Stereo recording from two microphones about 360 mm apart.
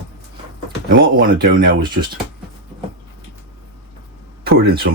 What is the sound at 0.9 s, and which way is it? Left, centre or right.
Speech, right.